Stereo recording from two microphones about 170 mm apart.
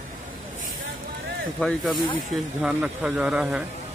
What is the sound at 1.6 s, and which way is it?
A man's voice, centre (ahead or behind).